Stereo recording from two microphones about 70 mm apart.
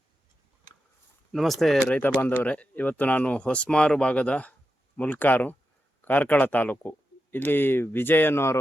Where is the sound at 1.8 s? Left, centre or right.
Left.